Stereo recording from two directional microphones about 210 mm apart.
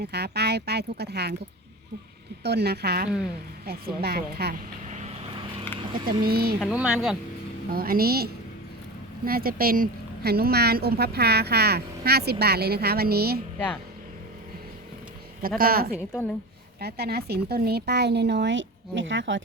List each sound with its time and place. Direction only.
0.0 s a woman's voice: 50° right (ahead or behind)
2.4 s a woman's voice: 50° right (ahead or behind)
6.1 s a woman's voice: 45° right (ahead or behind)
6.6 s speech: 5° right (ahead or behind)
7.7 s a woman's voice: 45° right (ahead or behind)
15.4 s a woman's voice: 45° right (ahead or behind)
16.0 s a woman's voice: 10° left (ahead or behind)
16.8 s a woman's voice: 50° right (ahead or behind)